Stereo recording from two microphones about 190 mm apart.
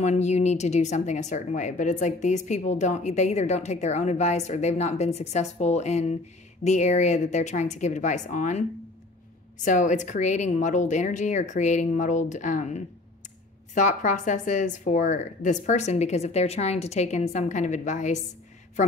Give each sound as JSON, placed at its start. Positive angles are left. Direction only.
{"t": 0.0, "sound": "speech", "side_deg": 35}
{"t": 9.7, "sound": "speech", "side_deg": 40}